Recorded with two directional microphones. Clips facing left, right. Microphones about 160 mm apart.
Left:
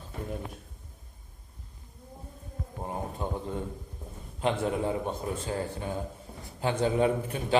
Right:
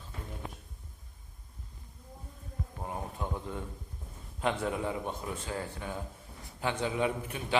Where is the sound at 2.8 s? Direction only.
30° left (ahead or behind).